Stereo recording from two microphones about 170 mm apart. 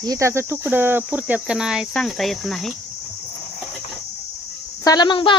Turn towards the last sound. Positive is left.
turn(degrees=30)  # may be behind; listen again after turning